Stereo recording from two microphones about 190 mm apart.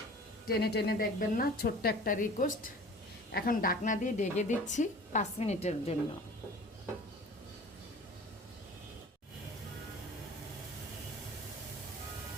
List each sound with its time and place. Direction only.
0.4 s a woman's voice: 55° left (ahead or behind); by 6.0 s 30° left (ahead or behind)